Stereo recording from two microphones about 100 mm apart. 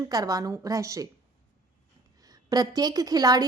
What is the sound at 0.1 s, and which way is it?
Speech, 40° right (ahead or behind).